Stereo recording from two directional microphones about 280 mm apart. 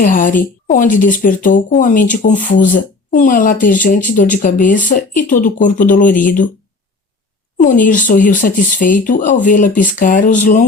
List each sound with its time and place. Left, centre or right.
0.0 s speech: left
7.6 s speech: left